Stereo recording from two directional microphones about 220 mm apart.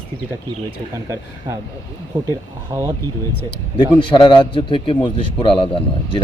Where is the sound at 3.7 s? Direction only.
20° left (ahead or behind).